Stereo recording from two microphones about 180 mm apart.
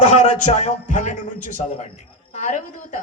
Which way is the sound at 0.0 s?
40° left (ahead or behind).